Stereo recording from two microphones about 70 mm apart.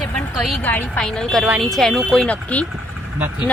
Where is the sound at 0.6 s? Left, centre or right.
Left.